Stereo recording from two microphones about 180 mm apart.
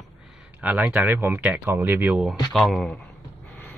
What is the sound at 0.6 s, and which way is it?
Speech, 10° right (ahead or behind).